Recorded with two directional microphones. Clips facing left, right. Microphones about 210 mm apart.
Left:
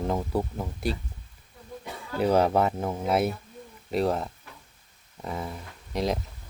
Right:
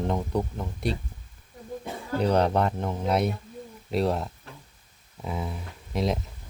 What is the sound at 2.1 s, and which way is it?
Speech, 5° left (ahead or behind).